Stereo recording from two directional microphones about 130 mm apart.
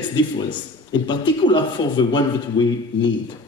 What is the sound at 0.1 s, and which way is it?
A man's voice, 35° left (ahead or behind).